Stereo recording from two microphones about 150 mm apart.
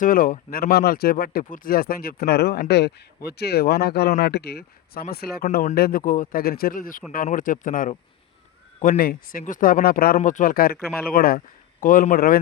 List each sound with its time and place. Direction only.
0.0 s speech: 70° left (ahead or behind); by 10.2 s 85° left
10.2 s speech: 60° left (ahead or behind); by 12.4 s 75° left (ahead or behind)